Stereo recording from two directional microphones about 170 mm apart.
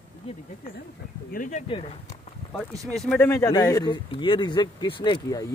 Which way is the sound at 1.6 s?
30° left (ahead or behind).